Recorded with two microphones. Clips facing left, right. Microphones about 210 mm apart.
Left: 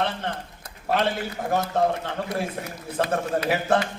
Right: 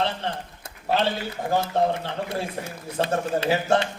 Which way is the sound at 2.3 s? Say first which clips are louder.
Left 1 dB; 25° right (ahead or behind).